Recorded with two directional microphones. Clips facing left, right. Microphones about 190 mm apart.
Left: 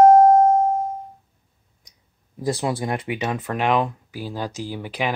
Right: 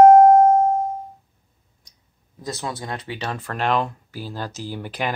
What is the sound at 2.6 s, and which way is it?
Speech, 20° left (ahead or behind).